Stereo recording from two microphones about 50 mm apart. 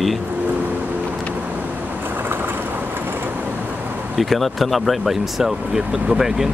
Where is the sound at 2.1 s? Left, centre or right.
Right.